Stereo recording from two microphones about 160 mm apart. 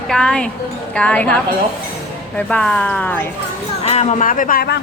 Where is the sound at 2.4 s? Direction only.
5° left (ahead or behind).